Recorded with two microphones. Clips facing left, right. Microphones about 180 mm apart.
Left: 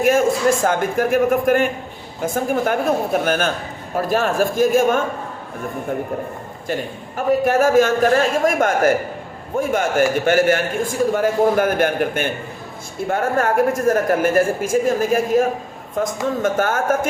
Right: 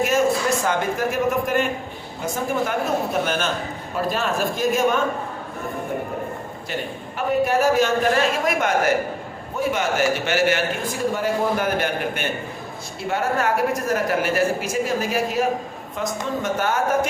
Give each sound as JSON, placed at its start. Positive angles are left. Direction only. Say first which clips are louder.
{"t": 0.0, "sound": "a man's voice", "louder": "left 4 dB", "side_deg": 50}
{"t": 7.4, "sound": "a man's voice", "louder": "left 4 dB", "side_deg": 50}